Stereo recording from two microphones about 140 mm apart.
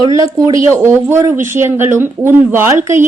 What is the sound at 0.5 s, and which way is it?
A woman's voice, 20° right (ahead or behind).